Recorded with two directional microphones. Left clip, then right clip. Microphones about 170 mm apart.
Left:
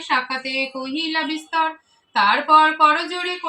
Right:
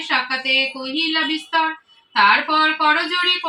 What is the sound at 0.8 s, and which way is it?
Speech, 35° left (ahead or behind).